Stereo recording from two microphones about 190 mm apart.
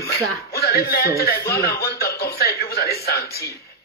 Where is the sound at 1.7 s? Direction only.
55° left (ahead or behind).